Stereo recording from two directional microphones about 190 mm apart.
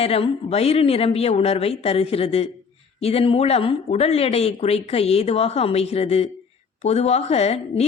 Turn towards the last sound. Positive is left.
turn(degrees=35)  # may be behind; listen again after turning